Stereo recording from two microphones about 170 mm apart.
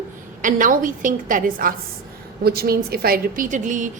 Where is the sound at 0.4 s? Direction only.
50° right (ahead or behind).